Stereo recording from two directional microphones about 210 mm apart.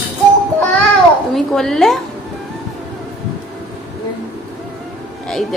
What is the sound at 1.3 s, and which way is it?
Speech, centre (ahead or behind).